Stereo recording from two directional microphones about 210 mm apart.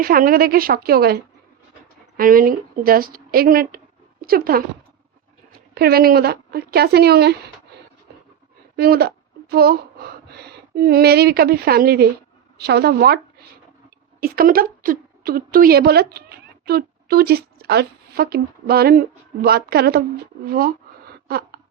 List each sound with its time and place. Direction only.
0.0 s speech: 45° right (ahead or behind)
5.7 s speech: 45° right (ahead or behind)
8.7 s speech: 50° right (ahead or behind)
14.2 s a woman's voice: 45° right (ahead or behind)